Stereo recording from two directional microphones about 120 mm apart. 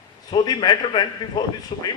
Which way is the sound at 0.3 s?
40° left (ahead or behind).